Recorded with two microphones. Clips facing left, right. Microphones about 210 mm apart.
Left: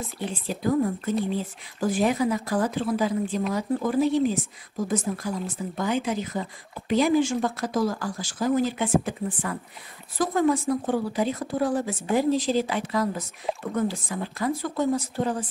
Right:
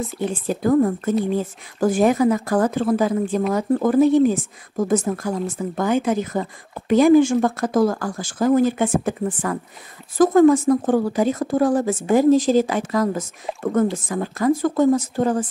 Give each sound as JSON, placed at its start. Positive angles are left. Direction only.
{"t": 0.2, "sound": "speech", "side_deg": -50}
{"t": 10.1, "sound": "speech", "side_deg": -50}